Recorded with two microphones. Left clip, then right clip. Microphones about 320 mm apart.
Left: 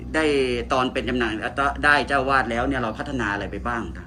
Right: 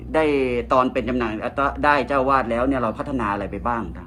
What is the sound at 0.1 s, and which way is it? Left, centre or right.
Speech, centre.